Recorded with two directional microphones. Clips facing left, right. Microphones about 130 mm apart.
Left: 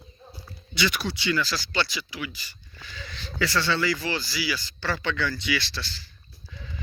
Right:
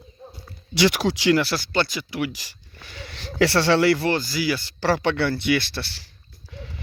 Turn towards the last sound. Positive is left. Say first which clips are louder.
# right 5 dB
turn(degrees=-70)  # may be behind; listen again after turning